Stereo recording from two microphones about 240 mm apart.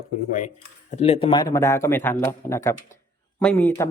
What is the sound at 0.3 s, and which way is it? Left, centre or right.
Speech, left.